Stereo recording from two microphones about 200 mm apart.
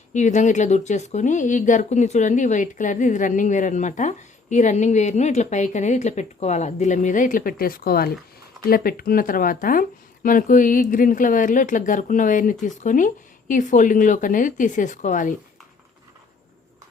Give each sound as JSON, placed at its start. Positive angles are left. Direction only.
{"t": 0.1, "sound": "speech", "side_deg": 35}